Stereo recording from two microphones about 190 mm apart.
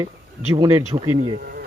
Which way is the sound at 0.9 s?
30° right (ahead or behind).